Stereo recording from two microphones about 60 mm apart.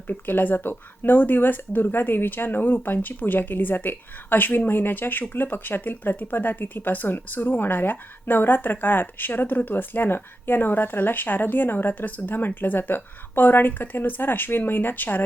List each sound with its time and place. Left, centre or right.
0.1 s speech: left